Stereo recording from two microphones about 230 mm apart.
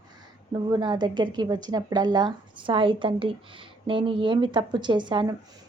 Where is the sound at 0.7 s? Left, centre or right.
Centre.